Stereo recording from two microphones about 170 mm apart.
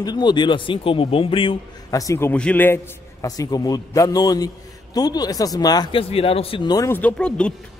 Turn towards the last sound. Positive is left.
turn(degrees=5)  # may be behind; listen again after turning